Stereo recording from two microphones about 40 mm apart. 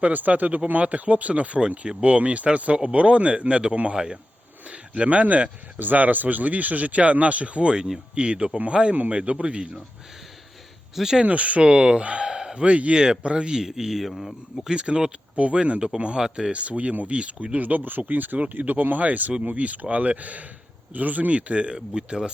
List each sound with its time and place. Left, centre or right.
0.0 s speech: right; by 4.2 s centre
4.7 s speech: right
10.9 s speech: centre
11.3 s speech: right; by 12.6 s centre
12.6 s speech: right
13.0 s speech: right
13.7 s speech: centre
14.1 s speech: centre
14.7 s speech: right
17.6 s speech: right